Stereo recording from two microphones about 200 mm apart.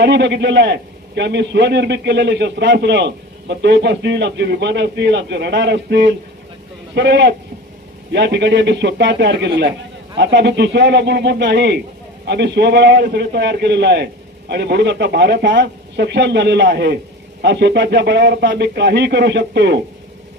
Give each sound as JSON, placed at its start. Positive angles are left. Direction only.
{"t": 0.0, "sound": "a man's voice", "side_deg": -60}